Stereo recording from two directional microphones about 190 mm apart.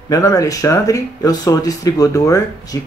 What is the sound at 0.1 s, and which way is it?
Speech, 20° left (ahead or behind).